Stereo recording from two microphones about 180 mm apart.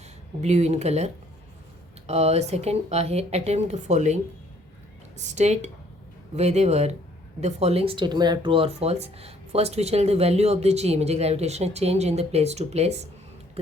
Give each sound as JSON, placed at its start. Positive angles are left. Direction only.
{"t": 0.4, "sound": "speech", "side_deg": -40}